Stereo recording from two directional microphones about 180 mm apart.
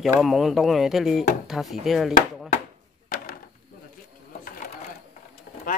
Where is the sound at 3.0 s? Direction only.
50° left (ahead or behind).